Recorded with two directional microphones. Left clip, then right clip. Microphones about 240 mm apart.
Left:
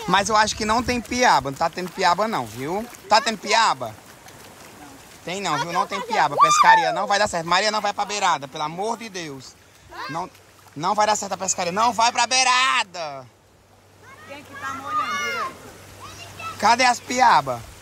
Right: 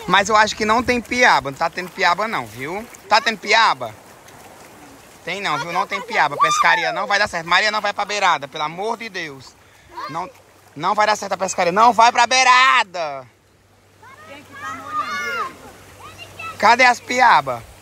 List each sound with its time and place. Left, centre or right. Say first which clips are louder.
0.1 s speech: right 4 dB; centre
5.2 s speech: right 2 dB; centre
10.8 s speech: right 3 dB; centre
14.3 s a sound: even; centre
16.5 s speech: right 5 dB; centre